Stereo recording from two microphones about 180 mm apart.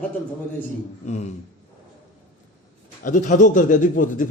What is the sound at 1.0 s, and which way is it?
Speech, 40° left (ahead or behind).